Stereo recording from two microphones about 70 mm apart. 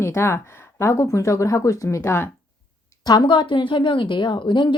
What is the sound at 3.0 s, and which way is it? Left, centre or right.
Speech, left.